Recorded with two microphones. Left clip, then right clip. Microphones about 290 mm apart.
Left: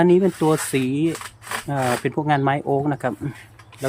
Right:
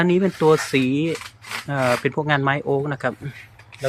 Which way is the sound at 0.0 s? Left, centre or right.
Centre.